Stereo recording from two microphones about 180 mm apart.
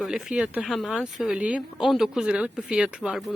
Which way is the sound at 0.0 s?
5° right (ahead or behind).